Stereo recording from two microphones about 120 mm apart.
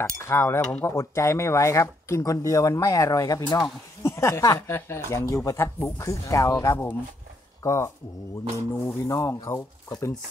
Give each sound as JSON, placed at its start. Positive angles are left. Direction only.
{"t": 0.3, "sound": "speech", "side_deg": 20}